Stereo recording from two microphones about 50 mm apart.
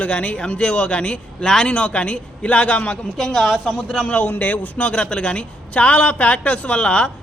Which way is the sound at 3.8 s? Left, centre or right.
Left.